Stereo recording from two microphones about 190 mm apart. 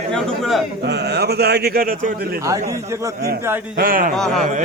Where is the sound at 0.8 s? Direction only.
60° right (ahead or behind).